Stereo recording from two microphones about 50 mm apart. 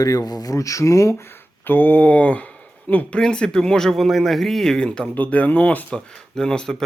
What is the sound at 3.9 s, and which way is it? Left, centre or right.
Speech, centre.